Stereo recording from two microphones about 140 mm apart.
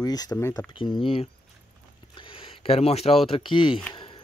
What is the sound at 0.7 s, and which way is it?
Speech, 35° left (ahead or behind).